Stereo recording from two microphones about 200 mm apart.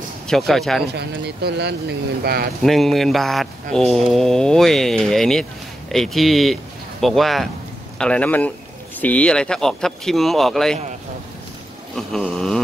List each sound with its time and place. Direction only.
0.3 s speech: centre (ahead or behind)
0.9 s speech: 55° right (ahead or behind)
2.6 s speech: centre (ahead or behind)
12.1 s a sound: 5° left (ahead or behind)